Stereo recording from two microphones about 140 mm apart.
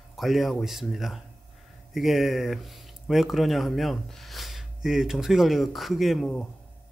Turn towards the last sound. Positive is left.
turn(degrees=0)  # may be behind; listen again after turning